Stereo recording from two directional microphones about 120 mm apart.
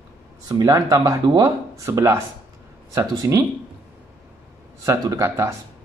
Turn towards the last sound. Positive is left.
turn(degrees=-25)  # may be behind; listen again after turning